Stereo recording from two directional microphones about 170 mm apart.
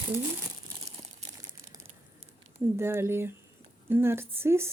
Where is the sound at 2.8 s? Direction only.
15° right (ahead or behind).